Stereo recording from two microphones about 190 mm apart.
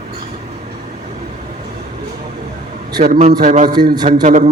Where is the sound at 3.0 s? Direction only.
40° right (ahead or behind).